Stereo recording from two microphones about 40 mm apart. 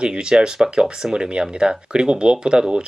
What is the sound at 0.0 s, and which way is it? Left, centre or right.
Speech, right.